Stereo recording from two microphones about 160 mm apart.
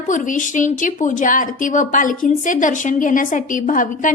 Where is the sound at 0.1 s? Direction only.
55° left (ahead or behind).